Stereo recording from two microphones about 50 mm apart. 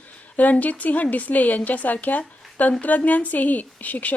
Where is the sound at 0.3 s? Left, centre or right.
Left.